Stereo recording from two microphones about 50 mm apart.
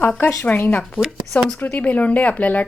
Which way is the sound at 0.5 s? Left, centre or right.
Left.